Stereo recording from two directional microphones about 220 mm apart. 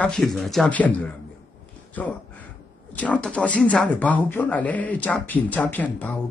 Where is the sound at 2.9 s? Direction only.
5° left (ahead or behind).